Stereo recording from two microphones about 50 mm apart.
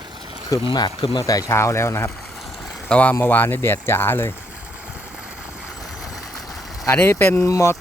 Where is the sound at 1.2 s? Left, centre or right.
Left.